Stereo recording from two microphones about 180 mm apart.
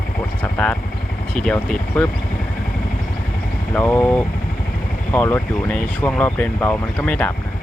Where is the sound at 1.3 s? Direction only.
5° left (ahead or behind).